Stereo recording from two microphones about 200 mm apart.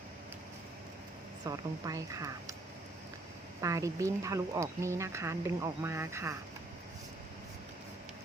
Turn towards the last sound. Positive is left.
turn(degrees=-15)  # may be behind; listen again after turning